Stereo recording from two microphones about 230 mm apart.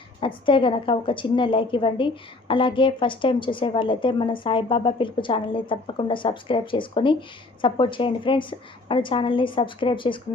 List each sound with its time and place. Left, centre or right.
0.2 s a woman's voice: left